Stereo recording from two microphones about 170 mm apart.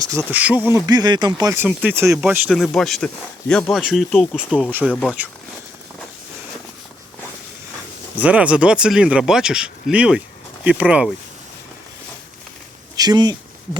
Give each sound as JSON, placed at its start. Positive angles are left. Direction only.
{"t": 0.3, "sound": "speech", "side_deg": -10}
{"t": 0.9, "sound": "speech", "side_deg": -25}
{"t": 1.5, "sound": "speech", "side_deg": -10}
{"t": 2.5, "sound": "speech", "side_deg": 0}
{"t": 8.1, "sound": "speech", "side_deg": -10}
{"t": 13.0, "sound": "speech", "side_deg": -25}